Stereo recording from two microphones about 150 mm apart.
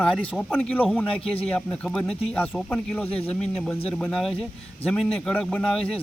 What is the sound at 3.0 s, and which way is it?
Speech, 40° left (ahead or behind).